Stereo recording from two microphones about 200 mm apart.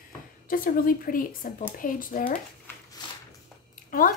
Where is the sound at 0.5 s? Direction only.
45° left (ahead or behind).